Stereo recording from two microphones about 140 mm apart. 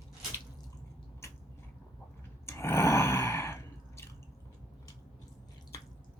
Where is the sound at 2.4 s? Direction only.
20° left (ahead or behind).